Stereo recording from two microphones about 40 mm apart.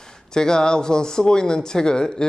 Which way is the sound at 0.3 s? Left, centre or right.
Centre.